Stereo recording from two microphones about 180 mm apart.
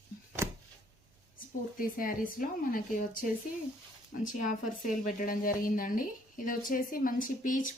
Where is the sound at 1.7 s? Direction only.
50° left (ahead or behind).